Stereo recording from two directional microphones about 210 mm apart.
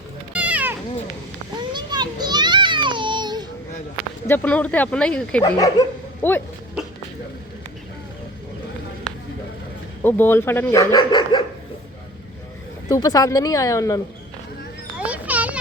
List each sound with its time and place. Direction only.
0.3 s cat: 5° right (ahead or behind)
1.5 s children playing: 20° right (ahead or behind)
4.3 s speech: 5° left (ahead or behind)
5.5 s speech: 15° left (ahead or behind)
10.0 s speech: 10° left (ahead or behind)
12.9 s speech: 15° left (ahead or behind)
14.9 s children playing: 5° right (ahead or behind)